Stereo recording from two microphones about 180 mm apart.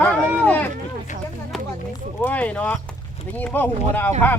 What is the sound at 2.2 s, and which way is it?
Speech, 10° left (ahead or behind).